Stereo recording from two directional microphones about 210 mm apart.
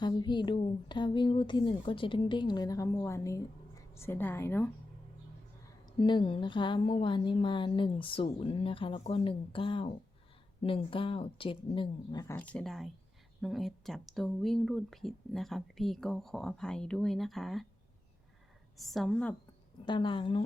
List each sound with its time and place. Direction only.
0.0 s a woman's voice: 20° left (ahead or behind)
5.8 s a woman's voice: 20° left (ahead or behind)
12.3 s speech: 5° left (ahead or behind)
18.8 s speech: centre (ahead or behind)
19.8 s a woman's voice: 20° left (ahead or behind)